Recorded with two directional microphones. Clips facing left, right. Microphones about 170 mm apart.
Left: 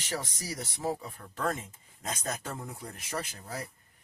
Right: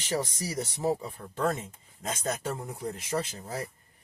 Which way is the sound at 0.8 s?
25° right (ahead or behind).